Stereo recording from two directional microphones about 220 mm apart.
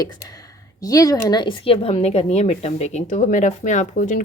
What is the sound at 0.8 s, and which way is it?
Speech, 15° left (ahead or behind).